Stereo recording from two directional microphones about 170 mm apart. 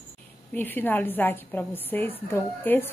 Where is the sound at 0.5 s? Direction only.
10° left (ahead or behind).